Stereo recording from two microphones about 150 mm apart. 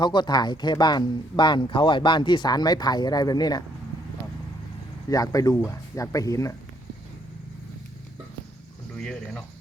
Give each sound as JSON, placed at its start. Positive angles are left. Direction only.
{"t": 0.0, "sound": "speech", "side_deg": 30}
{"t": 5.0, "sound": "speech", "side_deg": 25}
{"t": 9.0, "sound": "speech", "side_deg": 5}